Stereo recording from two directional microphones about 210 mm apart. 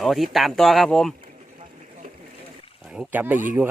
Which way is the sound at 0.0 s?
Centre (ahead or behind).